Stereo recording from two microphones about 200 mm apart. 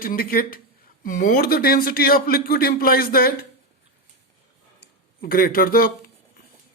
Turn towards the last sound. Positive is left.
turn(degrees=45)  # may be behind; listen again after turning